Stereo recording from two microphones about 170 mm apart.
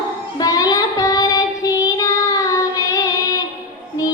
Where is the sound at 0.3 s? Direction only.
20° left (ahead or behind).